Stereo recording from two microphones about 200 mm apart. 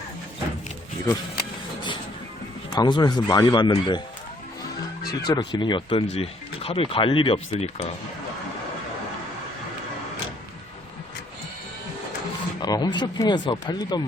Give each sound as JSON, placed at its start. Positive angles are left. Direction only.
{"t": 1.0, "sound": "music", "side_deg": 20}
{"t": 2.7, "sound": "speech", "side_deg": 20}
{"t": 5.2, "sound": "speech", "side_deg": 20}
{"t": 12.6, "sound": "speech", "side_deg": 20}